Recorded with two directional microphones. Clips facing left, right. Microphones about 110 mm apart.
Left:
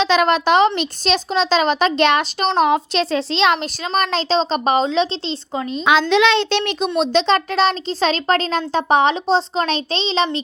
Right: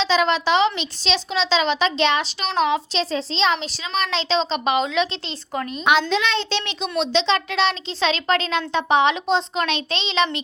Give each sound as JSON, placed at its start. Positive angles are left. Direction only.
{"t": 0.0, "sound": "speech", "side_deg": 55}
{"t": 6.1, "sound": "a child's voice", "side_deg": 75}
{"t": 6.6, "sound": "speech", "side_deg": 50}